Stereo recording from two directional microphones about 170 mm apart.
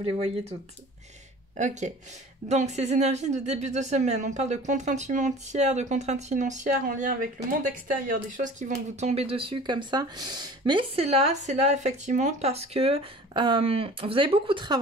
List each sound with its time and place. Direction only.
0.0 s speech: 35° right (ahead or behind)
1.6 s speech: 45° right (ahead or behind)
9.0 s speech: 35° right (ahead or behind)